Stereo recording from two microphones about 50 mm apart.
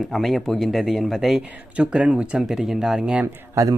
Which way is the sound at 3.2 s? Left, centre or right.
Right.